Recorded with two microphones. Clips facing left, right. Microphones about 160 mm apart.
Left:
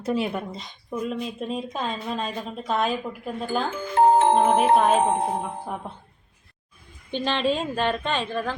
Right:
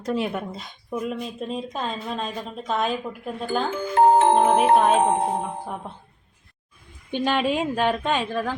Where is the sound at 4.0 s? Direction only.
90° right.